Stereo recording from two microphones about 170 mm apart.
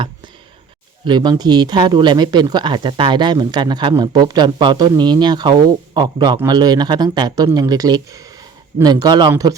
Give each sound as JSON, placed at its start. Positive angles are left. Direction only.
{"t": 1.0, "sound": "speech", "side_deg": -25}